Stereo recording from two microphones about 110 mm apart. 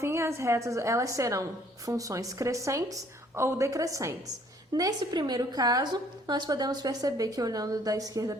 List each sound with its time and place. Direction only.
0.0 s a woman's voice: 25° right (ahead or behind)